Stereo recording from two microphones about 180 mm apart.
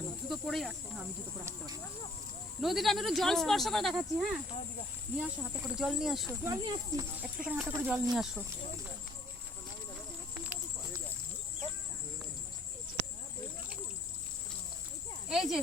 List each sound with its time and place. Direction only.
0.3 s speech: centre (ahead or behind)
1.5 s speech: 20° right (ahead or behind)
2.6 s speech: centre (ahead or behind)
6.4 s speech: 20° right (ahead or behind); by 8.4 s 5° right (ahead or behind)
10.4 s a sound: 10° right (ahead or behind)
15.3 s speech: centre (ahead or behind)